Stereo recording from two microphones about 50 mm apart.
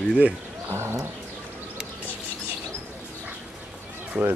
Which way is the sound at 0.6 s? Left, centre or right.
Right.